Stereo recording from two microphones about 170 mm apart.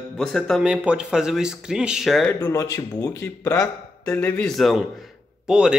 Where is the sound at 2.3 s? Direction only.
20° left (ahead or behind); by 5.7 s 5° right (ahead or behind).